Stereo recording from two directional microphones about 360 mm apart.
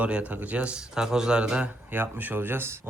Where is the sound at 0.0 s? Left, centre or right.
Centre.